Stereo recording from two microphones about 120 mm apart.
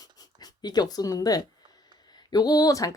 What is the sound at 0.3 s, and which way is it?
Speech, 35° left (ahead or behind).